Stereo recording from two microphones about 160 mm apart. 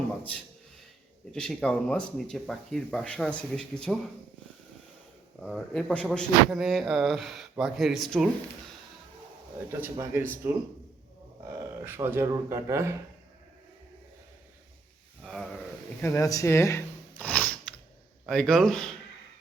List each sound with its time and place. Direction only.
1.3 s speech: 5° left (ahead or behind)
5.4 s speech: centre (ahead or behind)
9.8 s speech: 15° right (ahead or behind)
11.4 s speech: 15° right (ahead or behind)
15.2 s a sound: centre (ahead or behind)
16.0 s a sound: 20° left (ahead or behind)
18.3 s speech: 5° left (ahead or behind)